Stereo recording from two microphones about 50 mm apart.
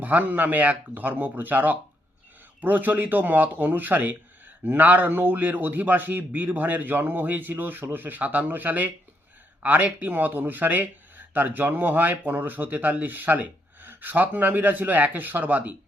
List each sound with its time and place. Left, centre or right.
0.0 s speech: right